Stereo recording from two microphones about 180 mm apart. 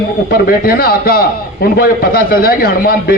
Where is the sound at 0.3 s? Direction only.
55° left (ahead or behind).